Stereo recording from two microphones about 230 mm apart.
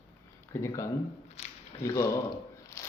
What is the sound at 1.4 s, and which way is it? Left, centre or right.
Squish, left.